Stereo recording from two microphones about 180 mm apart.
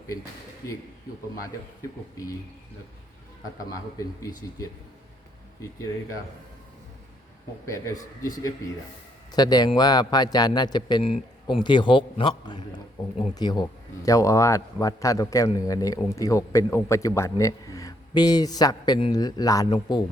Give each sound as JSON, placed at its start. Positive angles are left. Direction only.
{"t": 0.6, "sound": "speech", "side_deg": 20}
{"t": 3.7, "sound": "speech", "side_deg": 20}
{"t": 7.6, "sound": "a man's voice", "side_deg": 15}